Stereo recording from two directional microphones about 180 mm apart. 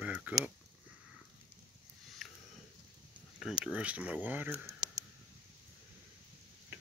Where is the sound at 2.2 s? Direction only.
Centre (ahead or behind).